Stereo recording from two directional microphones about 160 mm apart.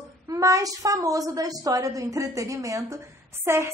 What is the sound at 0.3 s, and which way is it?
A woman's voice, 20° right (ahead or behind).